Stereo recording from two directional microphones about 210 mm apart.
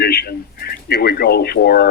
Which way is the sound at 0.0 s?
50° left (ahead or behind).